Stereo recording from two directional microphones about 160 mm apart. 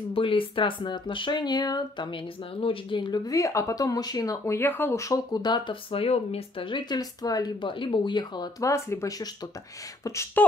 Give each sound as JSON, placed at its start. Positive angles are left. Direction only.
{"t": 0.1, "sound": "speech", "side_deg": 35}